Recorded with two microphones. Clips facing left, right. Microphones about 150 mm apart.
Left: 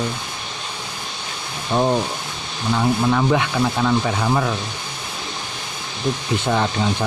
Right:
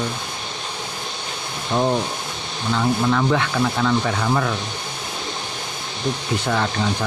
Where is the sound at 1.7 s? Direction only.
10° left (ahead or behind).